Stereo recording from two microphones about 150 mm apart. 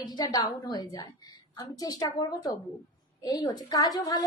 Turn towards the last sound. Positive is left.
turn(degrees=25)  # may be behind; listen again after turning